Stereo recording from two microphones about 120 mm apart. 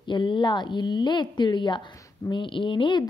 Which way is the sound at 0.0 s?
40° left (ahead or behind).